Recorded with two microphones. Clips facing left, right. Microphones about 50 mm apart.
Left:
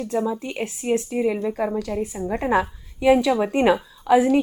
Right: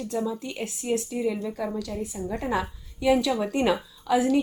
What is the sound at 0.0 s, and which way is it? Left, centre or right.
Speech, left.